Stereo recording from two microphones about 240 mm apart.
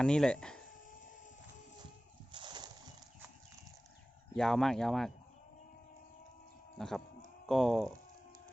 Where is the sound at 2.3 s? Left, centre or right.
Centre.